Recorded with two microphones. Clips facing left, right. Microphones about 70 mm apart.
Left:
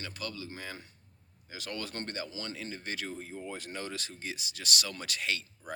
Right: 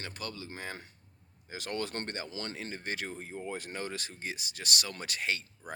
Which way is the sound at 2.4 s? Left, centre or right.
Right.